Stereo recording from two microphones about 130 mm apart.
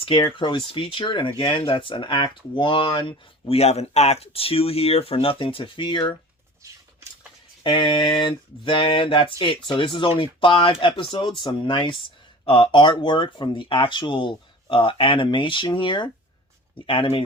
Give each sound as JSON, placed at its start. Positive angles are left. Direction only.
{"t": 0.0, "sound": "speech", "side_deg": 40}
{"t": 7.6, "sound": "speech", "side_deg": 40}